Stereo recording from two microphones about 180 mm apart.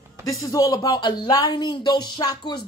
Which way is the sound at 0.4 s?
20° left (ahead or behind).